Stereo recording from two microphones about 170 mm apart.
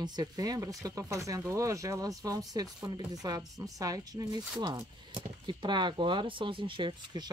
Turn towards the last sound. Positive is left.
turn(degrees=-25)  # may be behind; listen again after turning